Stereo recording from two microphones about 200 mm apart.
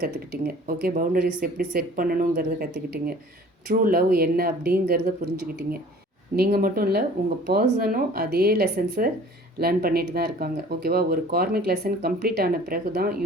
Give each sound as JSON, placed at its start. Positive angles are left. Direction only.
{"t": 0.0, "sound": "speech", "side_deg": -50}